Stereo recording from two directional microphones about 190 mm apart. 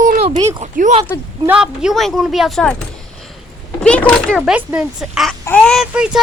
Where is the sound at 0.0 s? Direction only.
45° right (ahead or behind).